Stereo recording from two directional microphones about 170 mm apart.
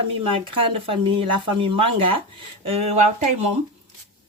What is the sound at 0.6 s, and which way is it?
A woman's voice, 35° right (ahead or behind).